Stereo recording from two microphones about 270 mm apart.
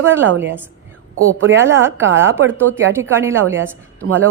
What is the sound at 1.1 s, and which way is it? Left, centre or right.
Speech, right.